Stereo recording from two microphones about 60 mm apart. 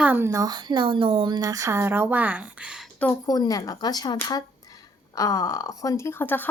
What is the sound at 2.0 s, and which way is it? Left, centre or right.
Speech, right.